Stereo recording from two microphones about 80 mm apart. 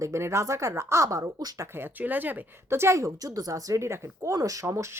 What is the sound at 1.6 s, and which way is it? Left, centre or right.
Speech, right.